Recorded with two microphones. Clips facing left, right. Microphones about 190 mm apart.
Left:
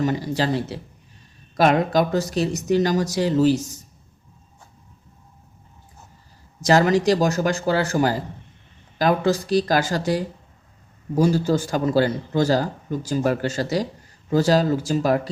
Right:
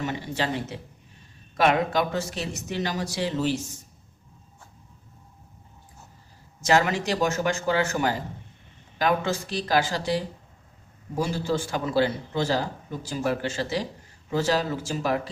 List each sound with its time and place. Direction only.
0.0 s speech: 35° left (ahead or behind)
6.6 s speech: 35° left (ahead or behind)